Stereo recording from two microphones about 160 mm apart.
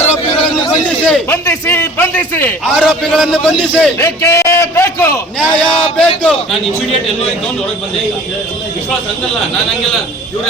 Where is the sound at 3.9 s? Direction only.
15° left (ahead or behind).